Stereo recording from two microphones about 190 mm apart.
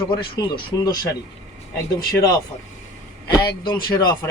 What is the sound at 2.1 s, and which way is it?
Speech, 20° left (ahead or behind).